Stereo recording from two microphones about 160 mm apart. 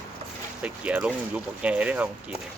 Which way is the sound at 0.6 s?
10° right (ahead or behind).